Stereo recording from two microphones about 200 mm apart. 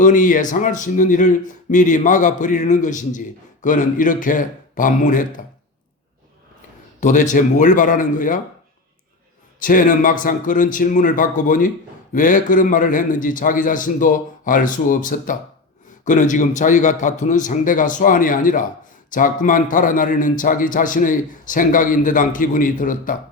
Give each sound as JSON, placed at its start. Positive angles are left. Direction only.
{"t": 0.0, "sound": "speech", "side_deg": 40}
{"t": 7.0, "sound": "speech", "side_deg": 40}
{"t": 9.6, "sound": "speech", "side_deg": 40}